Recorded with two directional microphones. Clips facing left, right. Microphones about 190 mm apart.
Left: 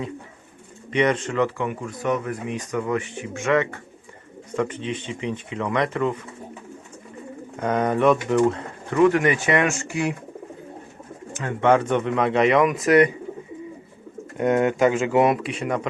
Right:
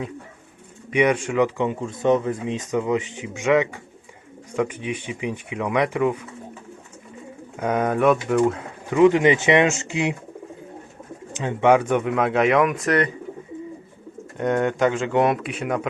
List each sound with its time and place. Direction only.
0.9 s speech: 10° right (ahead or behind)
7.5 s speech: 5° right (ahead or behind)
9.0 s speech: 20° right (ahead or behind)
11.3 s speech: 15° right (ahead or behind); by 13.1 s 10° left (ahead or behind)
14.3 s speech: 5° left (ahead or behind)